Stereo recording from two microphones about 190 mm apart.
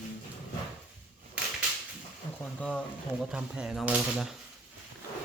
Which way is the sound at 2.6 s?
5° left (ahead or behind).